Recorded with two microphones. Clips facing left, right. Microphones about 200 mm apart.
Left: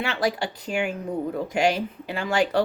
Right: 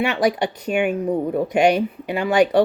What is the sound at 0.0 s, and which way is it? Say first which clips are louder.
Speech: right 6 dB; 20° right (ahead or behind).